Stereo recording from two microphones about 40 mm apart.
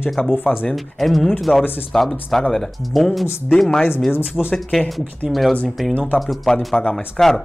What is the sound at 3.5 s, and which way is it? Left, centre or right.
Speech, centre.